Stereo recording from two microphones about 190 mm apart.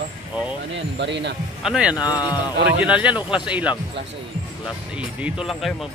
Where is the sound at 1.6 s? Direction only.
5° right (ahead or behind).